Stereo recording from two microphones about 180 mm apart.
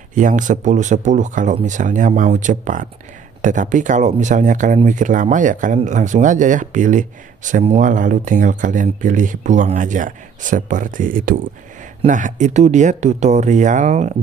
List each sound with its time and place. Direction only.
0.1 s speech: 45° right (ahead or behind)